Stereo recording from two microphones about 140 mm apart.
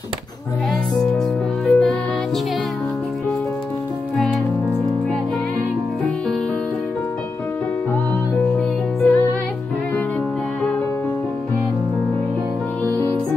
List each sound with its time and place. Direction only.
1.7 s music: centre (ahead or behind)
8.5 s music: 10° left (ahead or behind)